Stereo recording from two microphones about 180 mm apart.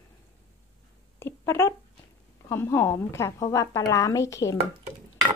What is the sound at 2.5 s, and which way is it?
A woman's voice, 15° left (ahead or behind).